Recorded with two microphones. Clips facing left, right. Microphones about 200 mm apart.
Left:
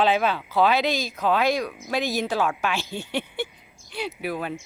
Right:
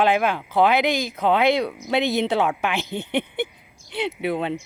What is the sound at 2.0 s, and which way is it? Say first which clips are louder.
Speech: right 4 dB; 60° right (ahead or behind).